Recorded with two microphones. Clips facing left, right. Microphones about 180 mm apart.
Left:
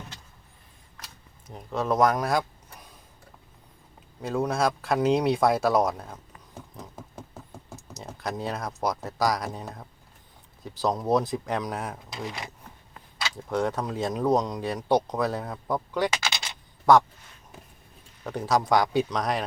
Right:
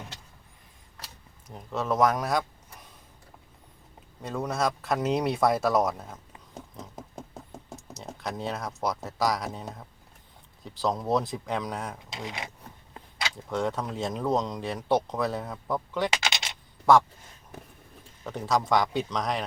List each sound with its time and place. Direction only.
1.5 s speech: centre (ahead or behind)
4.2 s speech: 5° left (ahead or behind)
7.9 s speech: centre (ahead or behind)
12.1 s speech: 20° right (ahead or behind)
13.3 s speech: centre (ahead or behind)
16.2 s a sound: 20° right (ahead or behind)
18.3 s speech: centre (ahead or behind)